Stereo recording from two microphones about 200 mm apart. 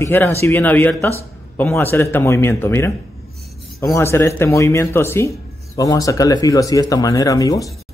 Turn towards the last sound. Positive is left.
turn(degrees=15)  # may be behind; listen again after turning